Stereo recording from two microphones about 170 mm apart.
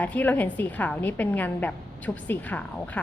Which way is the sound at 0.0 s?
10° left (ahead or behind).